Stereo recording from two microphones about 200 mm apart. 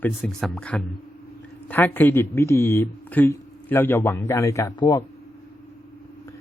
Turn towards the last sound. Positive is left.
turn(degrees=15)  # may be behind; listen again after turning